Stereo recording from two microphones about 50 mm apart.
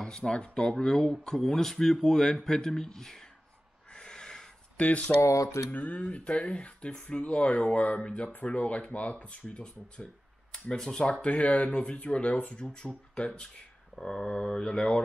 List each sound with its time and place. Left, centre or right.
0.0 s speech: centre
3.9 s owl: centre
4.7 s speech: left
5.2 s a sound: left
5.7 s speech: left
13.9 s speech: centre